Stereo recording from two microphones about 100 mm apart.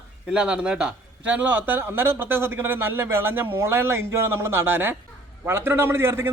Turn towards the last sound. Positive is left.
turn(degrees=-25)  # may be behind; listen again after turning